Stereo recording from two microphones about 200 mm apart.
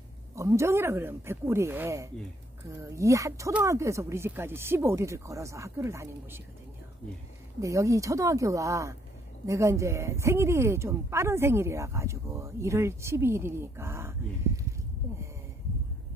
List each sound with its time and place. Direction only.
0.4 s speech: 15° right (ahead or behind)
7.6 s speech: 15° right (ahead or behind)